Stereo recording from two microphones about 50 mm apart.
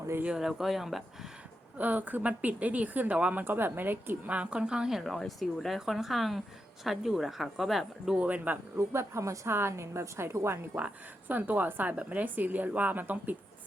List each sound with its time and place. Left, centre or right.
0.3 s speech: centre
1.8 s speech: right
3.4 s a woman's voice: right
4.3 s a woman's voice: right
5.0 s speech: centre
8.1 s speech: right
8.8 s a woman's voice: right
9.5 s a woman's voice: right
11.3 s speech: right